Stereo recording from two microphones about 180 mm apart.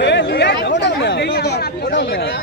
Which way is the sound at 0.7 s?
80° left.